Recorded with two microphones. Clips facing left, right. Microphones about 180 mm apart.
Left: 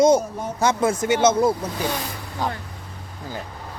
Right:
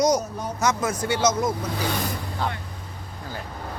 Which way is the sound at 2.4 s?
10° left (ahead or behind).